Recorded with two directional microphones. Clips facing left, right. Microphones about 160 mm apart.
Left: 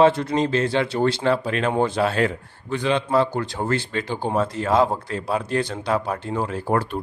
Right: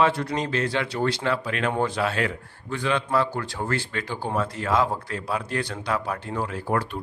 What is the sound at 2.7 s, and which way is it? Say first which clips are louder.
Speech: left 3 dB; 20° left (ahead or behind).